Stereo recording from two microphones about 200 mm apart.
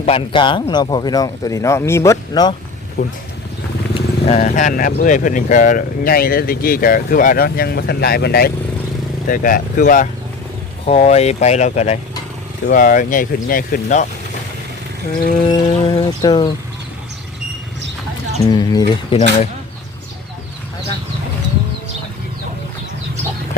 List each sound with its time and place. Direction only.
0.0 s speech: 25° left (ahead or behind)
3.0 s speech: 35° left (ahead or behind)
15.4 s speech: 20° left (ahead or behind)
18.5 s speech: 20° left (ahead or behind)